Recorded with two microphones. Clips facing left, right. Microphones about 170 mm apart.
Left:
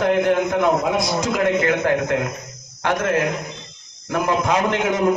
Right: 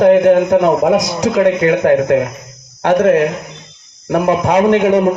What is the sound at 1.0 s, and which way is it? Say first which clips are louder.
A man's voice: right 6 dB; 65° right (ahead or behind).